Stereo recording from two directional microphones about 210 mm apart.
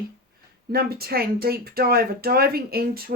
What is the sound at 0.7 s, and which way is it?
Speech, 45° right (ahead or behind).